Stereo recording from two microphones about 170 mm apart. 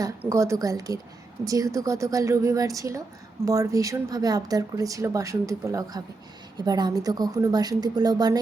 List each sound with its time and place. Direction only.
0.2 s a woman's voice: 15° right (ahead or behind)